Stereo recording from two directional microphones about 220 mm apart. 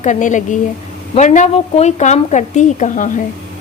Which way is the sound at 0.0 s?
35° left (ahead or behind).